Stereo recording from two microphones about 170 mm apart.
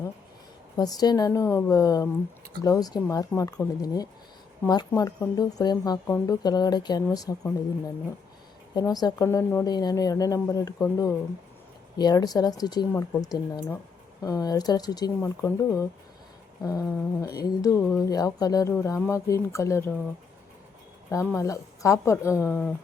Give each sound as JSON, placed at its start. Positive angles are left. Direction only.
{"t": 0.8, "sound": "speech", "side_deg": 20}
{"t": 8.7, "sound": "speech", "side_deg": 20}
{"t": 12.9, "sound": "speech", "side_deg": 10}
{"t": 13.2, "sound": "speech", "side_deg": 20}
{"t": 21.1, "sound": "speech", "side_deg": 15}